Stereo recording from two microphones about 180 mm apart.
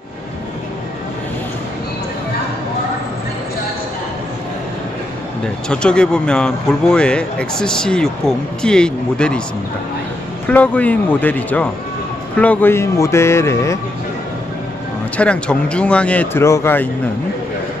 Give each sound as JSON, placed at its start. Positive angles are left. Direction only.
{"t": 5.7, "sound": "speech", "side_deg": 5}
{"t": 10.4, "sound": "a man's voice", "side_deg": 10}
{"t": 15.1, "sound": "a man's voice", "side_deg": 5}